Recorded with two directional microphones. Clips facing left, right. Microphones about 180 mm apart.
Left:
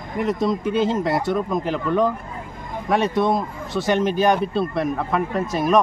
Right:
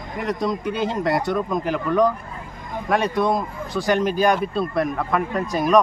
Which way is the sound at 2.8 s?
Centre (ahead or behind).